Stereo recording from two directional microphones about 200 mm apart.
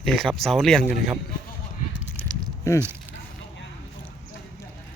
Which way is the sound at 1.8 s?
40° left (ahead or behind).